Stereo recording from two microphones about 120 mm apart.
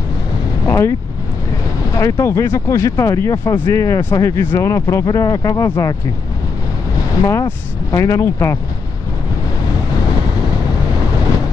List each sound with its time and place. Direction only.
0.7 s vehicle: 20° left (ahead or behind)
2.0 s speech: 25° left (ahead or behind)
7.2 s speech: 25° left (ahead or behind)